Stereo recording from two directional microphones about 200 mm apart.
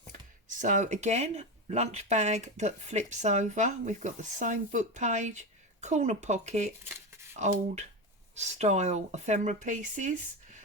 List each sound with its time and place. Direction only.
0.1 s speech: 40° right (ahead or behind)